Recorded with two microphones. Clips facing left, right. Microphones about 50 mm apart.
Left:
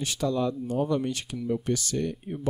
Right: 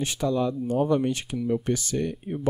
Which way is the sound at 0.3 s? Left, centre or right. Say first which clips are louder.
Right 2 dB; centre.